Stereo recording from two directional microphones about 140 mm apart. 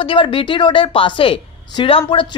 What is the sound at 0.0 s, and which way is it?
A woman's voice, 40° left (ahead or behind).